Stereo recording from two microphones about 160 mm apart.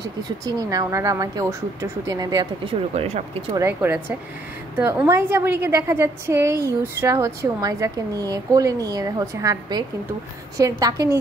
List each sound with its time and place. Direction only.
0.5 s a woman's voice: 25° right (ahead or behind)
2.9 s speech: 40° right (ahead or behind)
3.5 s a woman's voice: 15° right (ahead or behind)